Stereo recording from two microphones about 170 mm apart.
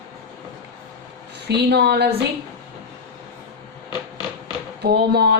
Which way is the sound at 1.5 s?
75° right (ahead or behind).